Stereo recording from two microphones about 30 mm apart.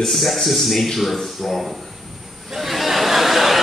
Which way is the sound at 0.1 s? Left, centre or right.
Centre.